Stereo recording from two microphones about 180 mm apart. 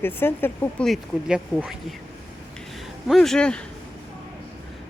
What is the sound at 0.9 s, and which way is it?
Speech, 5° right (ahead or behind).